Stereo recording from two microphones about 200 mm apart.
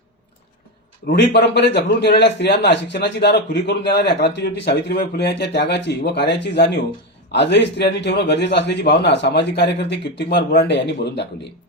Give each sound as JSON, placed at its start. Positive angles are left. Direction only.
{"t": 1.0, "sound": "a man's voice", "side_deg": 55}